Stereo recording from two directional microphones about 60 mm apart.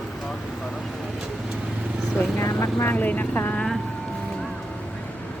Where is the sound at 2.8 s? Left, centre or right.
Left.